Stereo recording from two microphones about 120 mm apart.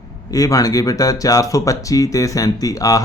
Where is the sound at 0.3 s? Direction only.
30° left (ahead or behind).